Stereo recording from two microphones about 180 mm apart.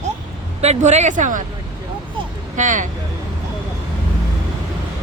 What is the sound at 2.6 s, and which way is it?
Speech, 45° right (ahead or behind).